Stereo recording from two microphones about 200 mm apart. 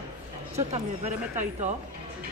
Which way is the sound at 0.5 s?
35° right (ahead or behind).